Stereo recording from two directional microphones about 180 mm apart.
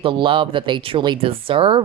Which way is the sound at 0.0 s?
30° right (ahead or behind).